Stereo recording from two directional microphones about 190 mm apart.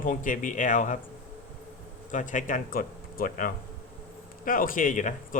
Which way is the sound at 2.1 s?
40° left (ahead or behind).